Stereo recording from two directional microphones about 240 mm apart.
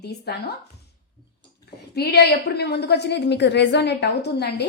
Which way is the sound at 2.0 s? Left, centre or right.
Left.